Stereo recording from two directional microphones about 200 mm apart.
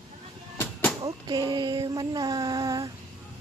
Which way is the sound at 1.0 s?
20° right (ahead or behind).